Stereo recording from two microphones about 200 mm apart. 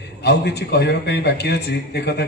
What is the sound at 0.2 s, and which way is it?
A man's voice, 55° left (ahead or behind).